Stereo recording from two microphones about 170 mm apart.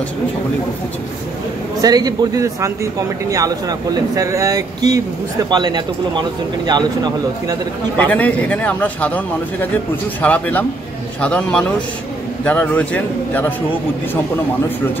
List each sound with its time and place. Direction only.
1.8 s speech: 25° right (ahead or behind)
8.0 s a man's voice: 10° left (ahead or behind)